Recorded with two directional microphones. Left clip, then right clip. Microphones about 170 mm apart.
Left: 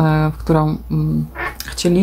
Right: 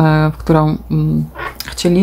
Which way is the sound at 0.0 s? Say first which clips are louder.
Right 4 dB; 20° right (ahead or behind).